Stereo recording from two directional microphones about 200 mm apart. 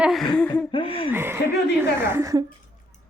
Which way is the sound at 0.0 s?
Centre (ahead or behind).